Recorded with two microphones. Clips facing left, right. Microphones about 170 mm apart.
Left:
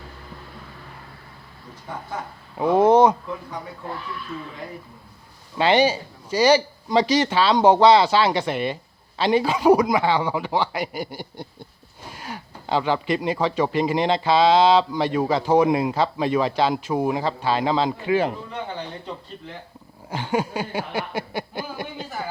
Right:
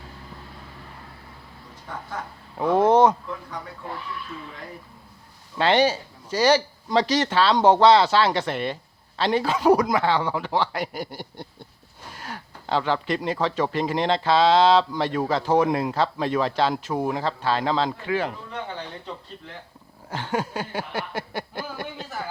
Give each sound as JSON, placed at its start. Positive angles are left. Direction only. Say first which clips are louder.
{"t": 1.9, "sound": "speech", "louder": "left 2 dB", "side_deg": 20}
{"t": 2.6, "sound": "speech", "louder": "left 2 dB", "side_deg": 5}
{"t": 5.5, "sound": "speech", "louder": "left 2 dB", "side_deg": 5}
{"t": 18.5, "sound": "speech", "louder": "left 2 dB", "side_deg": 5}